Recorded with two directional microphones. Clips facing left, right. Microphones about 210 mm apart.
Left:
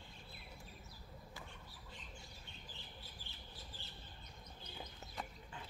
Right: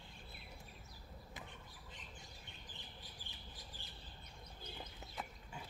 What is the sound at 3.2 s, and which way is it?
Bird, 15° right (ahead or behind).